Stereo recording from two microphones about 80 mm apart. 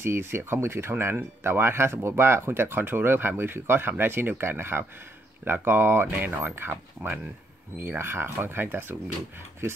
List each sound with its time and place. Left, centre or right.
0.0 s speech: right